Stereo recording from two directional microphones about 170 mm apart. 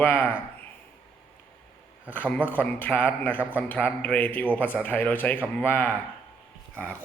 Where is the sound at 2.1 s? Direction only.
10° left (ahead or behind).